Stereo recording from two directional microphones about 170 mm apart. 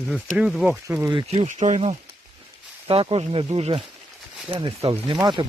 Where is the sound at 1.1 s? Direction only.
30° right (ahead or behind).